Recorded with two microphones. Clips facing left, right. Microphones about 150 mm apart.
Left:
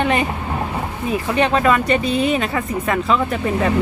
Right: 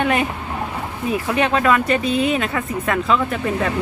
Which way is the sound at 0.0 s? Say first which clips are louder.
Left 1 dB; 5° right (ahead or behind).